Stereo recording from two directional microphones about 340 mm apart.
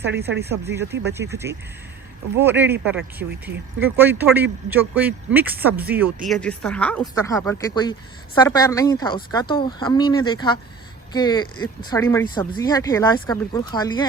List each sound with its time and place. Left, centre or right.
0.0 s speech: right
0.6 s speech: centre